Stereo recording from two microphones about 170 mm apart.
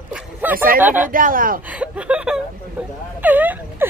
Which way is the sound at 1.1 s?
55° right (ahead or behind).